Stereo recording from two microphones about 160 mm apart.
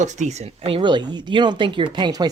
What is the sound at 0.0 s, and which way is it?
Speech, 50° right (ahead or behind).